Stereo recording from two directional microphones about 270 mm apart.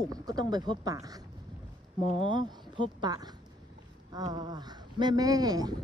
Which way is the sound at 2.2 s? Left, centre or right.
Centre.